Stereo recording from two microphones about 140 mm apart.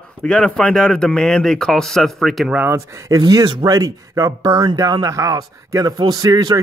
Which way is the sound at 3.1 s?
25° right (ahead or behind).